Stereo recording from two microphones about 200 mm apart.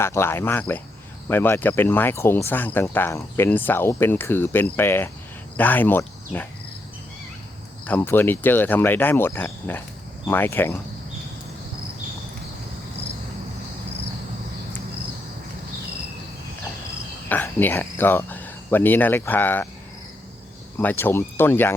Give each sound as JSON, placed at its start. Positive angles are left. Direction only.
{"t": 0.0, "sound": "speech", "side_deg": 10}
{"t": 7.9, "sound": "speech", "side_deg": 10}
{"t": 17.2, "sound": "speech", "side_deg": 10}
{"t": 20.7, "sound": "speech", "side_deg": 10}